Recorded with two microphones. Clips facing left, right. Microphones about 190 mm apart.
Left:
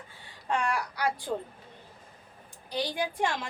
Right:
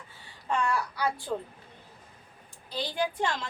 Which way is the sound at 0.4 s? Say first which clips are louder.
Right 1 dB; 15° left (ahead or behind).